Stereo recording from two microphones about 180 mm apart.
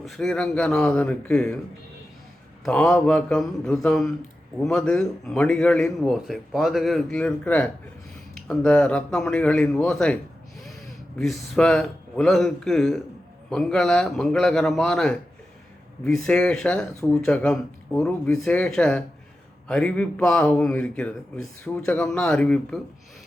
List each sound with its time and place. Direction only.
0.0 s speech: centre (ahead or behind)
2.6 s speech: 5° left (ahead or behind)
11.2 s speech: centre (ahead or behind)